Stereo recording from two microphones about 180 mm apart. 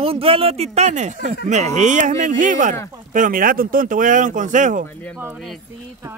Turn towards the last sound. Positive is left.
turn(degrees=-45)  # may be behind; listen again after turning